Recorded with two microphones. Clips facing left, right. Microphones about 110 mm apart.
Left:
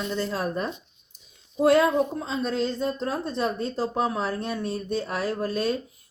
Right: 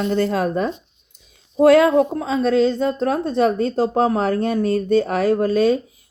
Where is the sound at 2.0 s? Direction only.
80° right.